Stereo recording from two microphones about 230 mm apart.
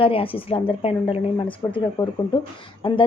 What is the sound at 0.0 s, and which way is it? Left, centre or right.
Speech, left.